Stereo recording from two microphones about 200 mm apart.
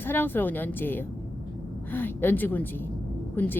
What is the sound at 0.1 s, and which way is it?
Speech, 10° left (ahead or behind).